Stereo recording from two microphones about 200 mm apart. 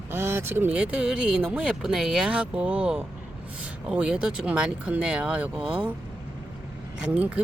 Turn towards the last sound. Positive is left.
turn(degrees=-5)  # may be behind; listen again after turning